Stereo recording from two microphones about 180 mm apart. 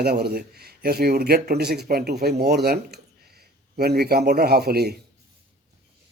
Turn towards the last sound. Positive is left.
turn(degrees=-60)  # may be behind; listen again after turning